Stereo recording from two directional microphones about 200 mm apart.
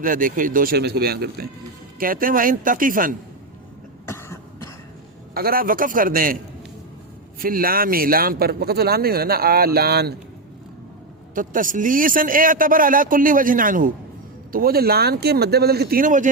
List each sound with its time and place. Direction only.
0.0 s a man's voice: 45° right (ahead or behind)
4.0 s cough: 15° left (ahead or behind)
5.3 s a man's voice: 50° right (ahead or behind)
7.3 s a man's voice: 45° right (ahead or behind)
11.3 s a man's voice: 40° right (ahead or behind)